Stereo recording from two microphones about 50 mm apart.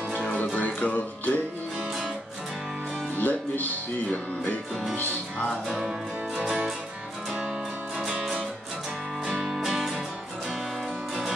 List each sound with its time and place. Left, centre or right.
0.6 s music: left
3.2 s music: left
4.9 s music: left
8.0 s music: centre